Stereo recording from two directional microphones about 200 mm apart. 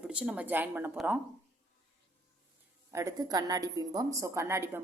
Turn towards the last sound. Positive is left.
turn(degrees=-10)  # may be behind; listen again after turning